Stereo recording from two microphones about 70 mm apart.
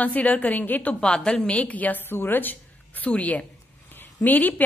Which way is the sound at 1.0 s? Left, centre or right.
Centre.